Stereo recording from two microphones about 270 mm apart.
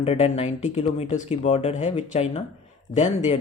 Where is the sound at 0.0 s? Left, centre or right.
Left.